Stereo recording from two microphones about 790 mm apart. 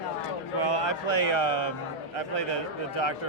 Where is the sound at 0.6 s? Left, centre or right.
Left.